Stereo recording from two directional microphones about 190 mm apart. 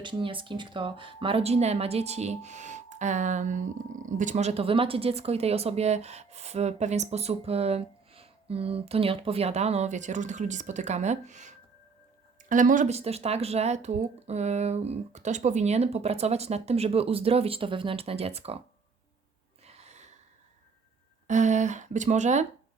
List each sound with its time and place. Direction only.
0.0 s speech: 25° right (ahead or behind)
19.6 s gasp: 35° right (ahead or behind)
21.2 s speech: 40° right (ahead or behind)